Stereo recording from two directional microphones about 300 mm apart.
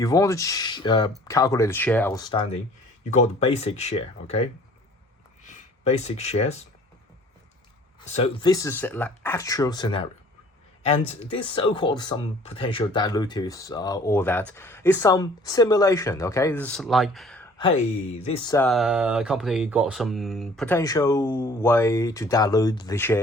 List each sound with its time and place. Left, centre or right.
0.0 s speech: centre
5.5 s speech: left
8.0 s speech: left; by 17.5 s centre
18.2 s speech: centre